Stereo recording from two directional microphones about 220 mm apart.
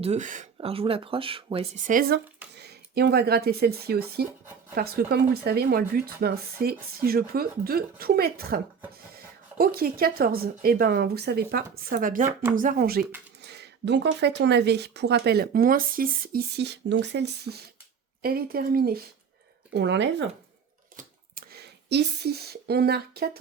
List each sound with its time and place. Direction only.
0.0 s speech: 30° right (ahead or behind)
1.9 s speech: 45° right (ahead or behind)
20.9 s a sound: 40° right (ahead or behind)